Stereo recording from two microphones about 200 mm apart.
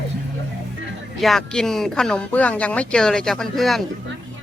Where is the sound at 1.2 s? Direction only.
Centre (ahead or behind).